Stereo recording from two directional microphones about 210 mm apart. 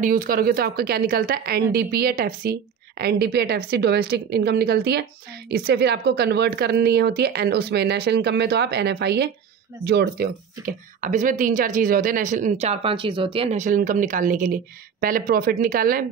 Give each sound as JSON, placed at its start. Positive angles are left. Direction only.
{"t": 0.0, "sound": "a woman's voice", "side_deg": -40}